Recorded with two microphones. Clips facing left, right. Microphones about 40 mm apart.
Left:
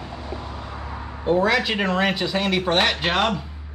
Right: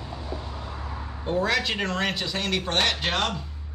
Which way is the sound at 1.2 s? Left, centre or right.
Centre.